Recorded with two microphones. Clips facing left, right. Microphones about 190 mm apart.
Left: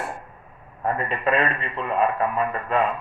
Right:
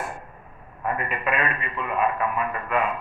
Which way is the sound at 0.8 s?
30° left (ahead or behind).